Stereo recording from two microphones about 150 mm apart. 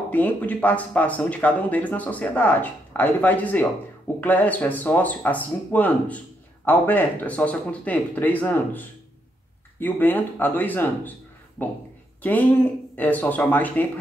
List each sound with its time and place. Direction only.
0.1 s speech: 10° left (ahead or behind)